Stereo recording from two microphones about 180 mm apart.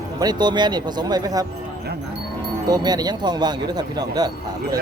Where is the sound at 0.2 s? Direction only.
25° right (ahead or behind).